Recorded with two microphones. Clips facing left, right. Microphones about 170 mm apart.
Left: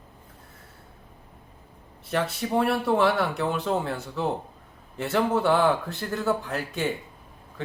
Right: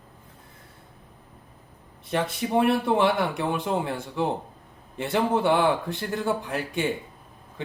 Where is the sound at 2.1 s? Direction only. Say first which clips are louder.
Right 1 dB; 20° right (ahead or behind).